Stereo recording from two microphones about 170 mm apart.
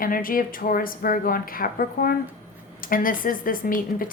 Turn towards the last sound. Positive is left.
turn(degrees=55)  # may be behind; listen again after turning